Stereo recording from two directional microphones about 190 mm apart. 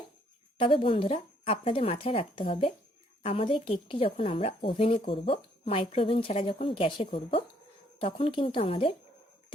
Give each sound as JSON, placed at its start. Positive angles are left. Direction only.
{"t": 0.6, "sound": "a woman's voice", "side_deg": 30}